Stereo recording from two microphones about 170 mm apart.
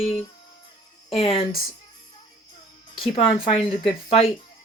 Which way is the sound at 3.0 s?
30° left (ahead or behind).